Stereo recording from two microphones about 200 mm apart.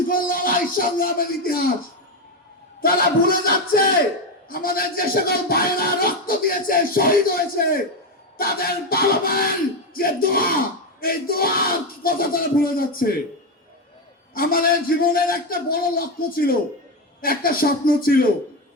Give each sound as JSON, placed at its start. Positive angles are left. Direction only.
{"t": 0.1, "sound": "speech", "side_deg": 45}
{"t": 2.8, "sound": "speech", "side_deg": 45}
{"t": 14.3, "sound": "speech", "side_deg": 45}